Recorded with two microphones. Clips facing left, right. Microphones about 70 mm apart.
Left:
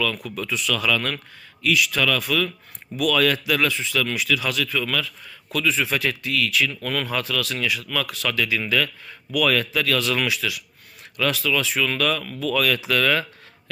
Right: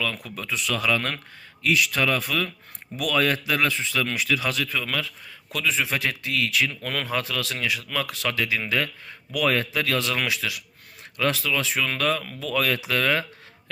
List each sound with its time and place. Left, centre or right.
0.0 s speech: right